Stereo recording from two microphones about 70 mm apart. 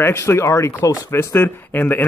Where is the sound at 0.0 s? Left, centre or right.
Left.